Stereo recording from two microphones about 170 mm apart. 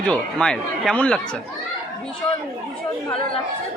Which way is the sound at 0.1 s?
5° left (ahead or behind).